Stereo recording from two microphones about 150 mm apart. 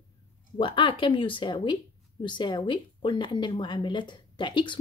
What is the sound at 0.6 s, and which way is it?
Speech, 35° left (ahead or behind).